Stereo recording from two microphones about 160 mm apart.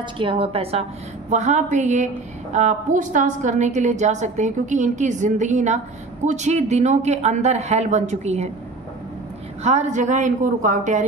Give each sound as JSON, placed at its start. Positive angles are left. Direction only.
{"t": 0.0, "sound": "a woman's voice", "side_deg": -35}
{"t": 1.3, "sound": "a woman's voice", "side_deg": -50}
{"t": 9.6, "sound": "a woman's voice", "side_deg": -45}